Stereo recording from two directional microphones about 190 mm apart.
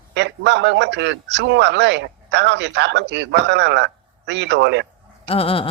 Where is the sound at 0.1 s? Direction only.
65° right (ahead or behind).